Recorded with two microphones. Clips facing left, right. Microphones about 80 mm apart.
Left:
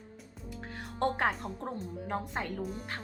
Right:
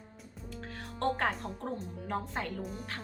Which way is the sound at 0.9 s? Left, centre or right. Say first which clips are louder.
Left 1 dB; centre.